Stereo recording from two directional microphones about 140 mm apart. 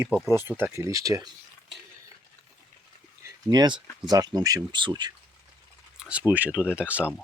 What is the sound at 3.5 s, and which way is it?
Speech, 30° right (ahead or behind).